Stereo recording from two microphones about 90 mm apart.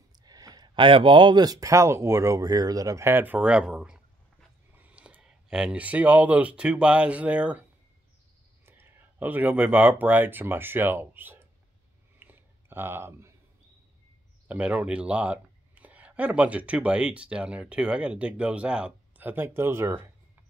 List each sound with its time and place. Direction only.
0.2 s a sound: 45° right (ahead or behind)
0.7 s speech: 70° right (ahead or behind); by 3.1 s 40° right (ahead or behind)
3.1 s speech: 20° right (ahead or behind)
8.6 s speech: 20° right (ahead or behind)
12.2 s clicking: 25° right (ahead or behind)
14.5 s speech: 15° right (ahead or behind)